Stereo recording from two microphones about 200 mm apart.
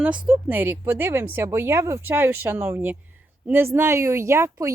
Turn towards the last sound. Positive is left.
turn(degrees=-15)  # may be behind; listen again after turning